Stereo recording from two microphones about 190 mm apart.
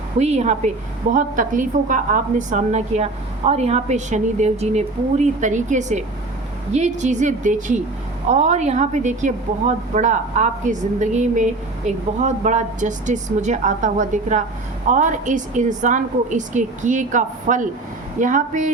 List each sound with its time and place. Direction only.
0.2 s a woman's voice: 35° right (ahead or behind)